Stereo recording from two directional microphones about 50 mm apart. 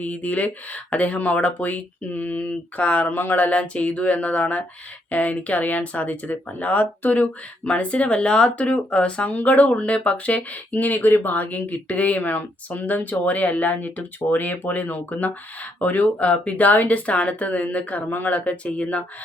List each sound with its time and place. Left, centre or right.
0.0 s speech: left
7.2 s speech: left